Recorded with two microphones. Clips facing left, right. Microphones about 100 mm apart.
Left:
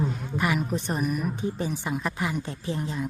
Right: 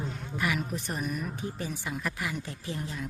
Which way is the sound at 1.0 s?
15° left (ahead or behind).